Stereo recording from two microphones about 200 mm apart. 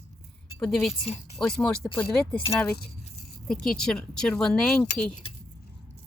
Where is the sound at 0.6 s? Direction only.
Centre (ahead or behind).